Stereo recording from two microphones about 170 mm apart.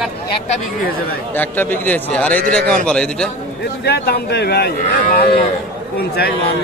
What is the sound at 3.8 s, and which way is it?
Speech, 75° left (ahead or behind).